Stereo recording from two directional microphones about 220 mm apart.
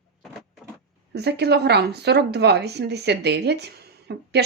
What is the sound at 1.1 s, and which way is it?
A woman's voice, 50° right (ahead or behind).